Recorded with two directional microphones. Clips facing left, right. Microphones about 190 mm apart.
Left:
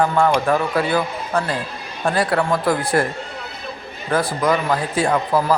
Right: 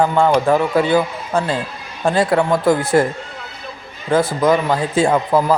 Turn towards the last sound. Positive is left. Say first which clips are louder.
# right 3 dB
turn(degrees=-20)  # may be behind; listen again after turning